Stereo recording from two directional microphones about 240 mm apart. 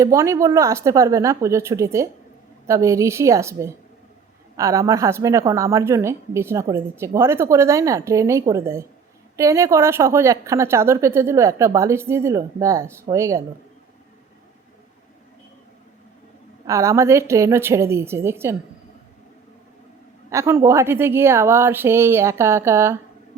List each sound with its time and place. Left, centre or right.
0.0 s a woman's voice: centre
16.6 s a woman's voice: centre
20.3 s a woman's voice: centre